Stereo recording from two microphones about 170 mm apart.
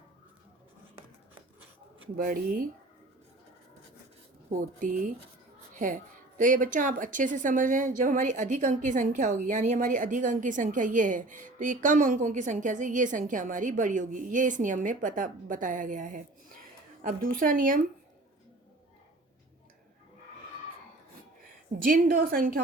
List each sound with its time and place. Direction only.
2.1 s a woman's voice: 55° right (ahead or behind)
4.4 s a woman's voice: 50° right (ahead or behind)
21.8 s a woman's voice: 65° right (ahead or behind)